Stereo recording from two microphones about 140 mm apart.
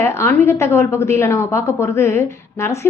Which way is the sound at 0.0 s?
20° left (ahead or behind).